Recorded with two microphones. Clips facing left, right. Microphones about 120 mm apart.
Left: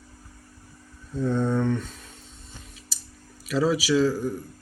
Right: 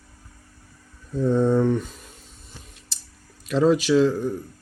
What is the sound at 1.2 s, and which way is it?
Mantra, centre (ahead or behind).